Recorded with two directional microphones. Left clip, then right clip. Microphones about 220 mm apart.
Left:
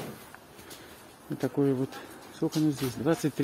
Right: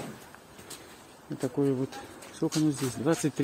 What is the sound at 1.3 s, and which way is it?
Speech, 15° left (ahead or behind).